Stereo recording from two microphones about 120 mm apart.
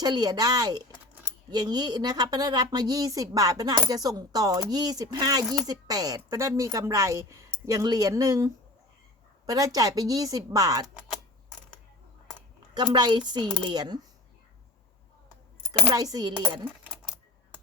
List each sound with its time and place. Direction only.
0.0 s a woman's voice: 35° right (ahead or behind)
12.7 s a woman's voice: 35° right (ahead or behind)
15.9 s a woman's voice: 30° right (ahead or behind)